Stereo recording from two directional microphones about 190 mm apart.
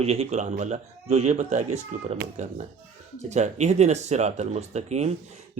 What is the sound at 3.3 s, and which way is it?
Speech, 35° right (ahead or behind).